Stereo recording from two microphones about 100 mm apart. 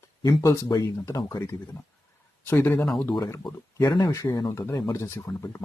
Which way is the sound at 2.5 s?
20° left (ahead or behind).